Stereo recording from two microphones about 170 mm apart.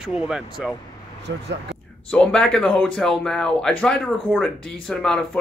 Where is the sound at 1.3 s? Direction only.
90° right.